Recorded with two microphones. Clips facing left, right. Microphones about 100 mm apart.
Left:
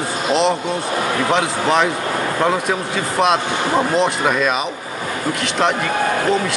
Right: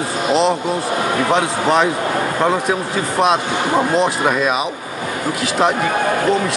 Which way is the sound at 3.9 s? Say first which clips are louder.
Right 1 dB; centre (ahead or behind).